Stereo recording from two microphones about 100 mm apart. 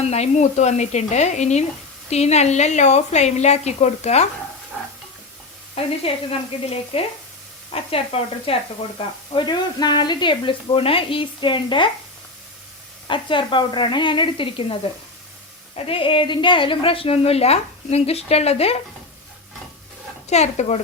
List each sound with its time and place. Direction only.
0.1 s a woman's voice: 90° left
5.7 s speech: 70° left (ahead or behind)
9.0 s speech: 55° left (ahead or behind)
13.1 s a woman's voice: 55° left (ahead or behind); by 18.8 s 90° left
20.3 s a woman's voice: 90° left